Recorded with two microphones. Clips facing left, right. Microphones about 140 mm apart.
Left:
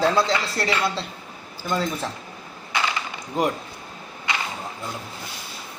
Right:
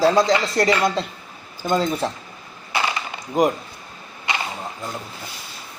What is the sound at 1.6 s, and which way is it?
Speech, 20° right (ahead or behind).